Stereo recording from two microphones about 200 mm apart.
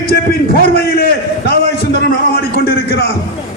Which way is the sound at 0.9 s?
50° left (ahead or behind).